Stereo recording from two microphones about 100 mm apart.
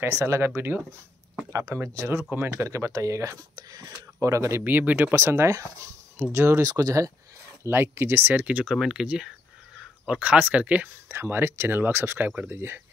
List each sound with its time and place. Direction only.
0.0 s speech: 30° right (ahead or behind)
6.6 s speech: 40° right (ahead or behind)
7.7 s speech: 25° right (ahead or behind)